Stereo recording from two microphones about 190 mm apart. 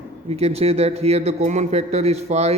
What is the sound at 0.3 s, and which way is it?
A man's voice, 35° right (ahead or behind).